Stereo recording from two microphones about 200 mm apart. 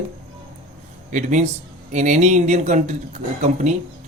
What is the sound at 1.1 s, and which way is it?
A man's voice, 35° right (ahead or behind).